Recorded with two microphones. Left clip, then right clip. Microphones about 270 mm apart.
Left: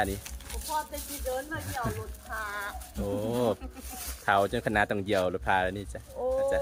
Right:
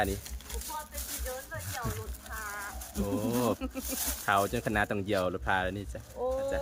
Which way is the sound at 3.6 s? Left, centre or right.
Right.